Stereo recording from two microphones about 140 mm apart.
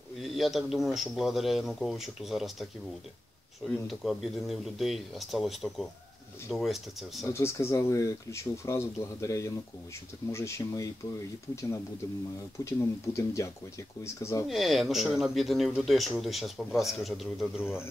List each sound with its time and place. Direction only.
0.2 s a man's voice: centre (ahead or behind)
3.8 s a man's voice: centre (ahead or behind)
7.2 s speech: 20° left (ahead or behind)
12.6 s speech: 20° left (ahead or behind)
14.5 s a man's voice: centre (ahead or behind)